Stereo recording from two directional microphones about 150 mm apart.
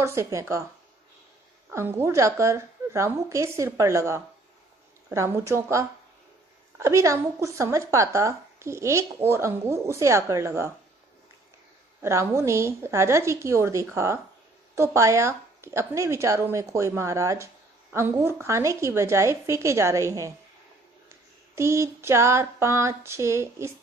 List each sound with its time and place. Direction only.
0.0 s a woman's voice: 20° right (ahead or behind)
1.7 s a woman's voice: 15° right (ahead or behind)
12.0 s a woman's voice: 20° right (ahead or behind)
21.5 s female singing: 20° right (ahead or behind)